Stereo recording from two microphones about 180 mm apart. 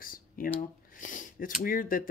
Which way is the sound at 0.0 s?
50° left (ahead or behind).